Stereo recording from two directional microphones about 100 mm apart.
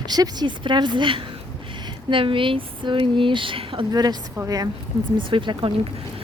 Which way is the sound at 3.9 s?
40° right (ahead or behind).